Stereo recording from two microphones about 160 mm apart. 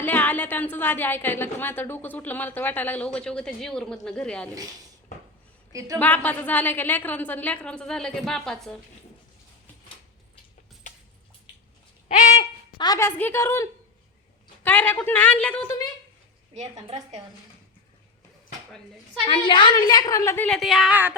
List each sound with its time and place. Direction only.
0.0 s a woman's voice: 10° left (ahead or behind)
6.0 s a woman's voice: 10° left (ahead or behind)
12.0 s a sound: 50° left (ahead or behind)
12.7 s a woman's voice: 25° left (ahead or behind)
13.0 s a woman's voice: 15° left (ahead or behind)
16.8 s a woman's voice: 40° right (ahead or behind)
19.2 s a woman's voice: 30° left (ahead or behind); by 20.6 s 10° left (ahead or behind)
20.6 s speech: centre (ahead or behind)